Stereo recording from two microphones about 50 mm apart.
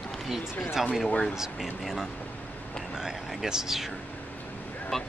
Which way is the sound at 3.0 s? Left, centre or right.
Centre.